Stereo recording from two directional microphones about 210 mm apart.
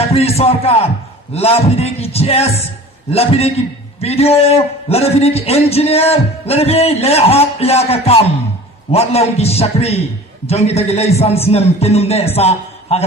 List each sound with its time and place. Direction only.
0.0 s a man's voice: 30° left (ahead or behind)